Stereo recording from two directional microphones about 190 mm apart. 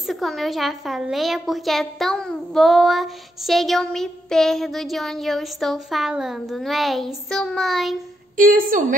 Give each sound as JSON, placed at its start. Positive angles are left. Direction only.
{"t": 0.0, "sound": "a woman's voice", "side_deg": 0}
{"t": 8.4, "sound": "a woman's voice", "side_deg": -45}